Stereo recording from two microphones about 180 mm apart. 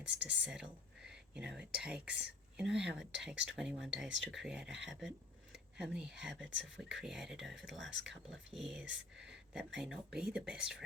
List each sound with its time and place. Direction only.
0.3 s speech: 5° right (ahead or behind)
9.1 s a sound: 75° right (ahead or behind)
9.5 s speech: 5° right (ahead or behind)